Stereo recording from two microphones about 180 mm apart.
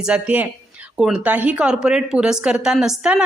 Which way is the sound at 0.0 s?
5° right (ahead or behind).